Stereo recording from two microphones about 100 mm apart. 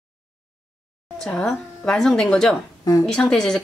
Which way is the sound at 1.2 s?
5° left (ahead or behind).